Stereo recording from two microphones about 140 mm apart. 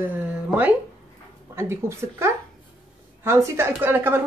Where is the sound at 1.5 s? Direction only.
20° right (ahead or behind).